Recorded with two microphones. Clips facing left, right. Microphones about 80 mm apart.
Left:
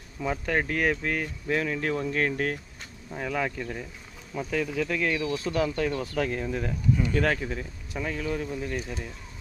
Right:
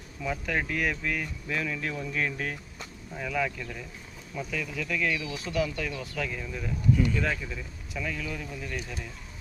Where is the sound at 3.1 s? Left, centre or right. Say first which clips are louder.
Left 1 dB; left.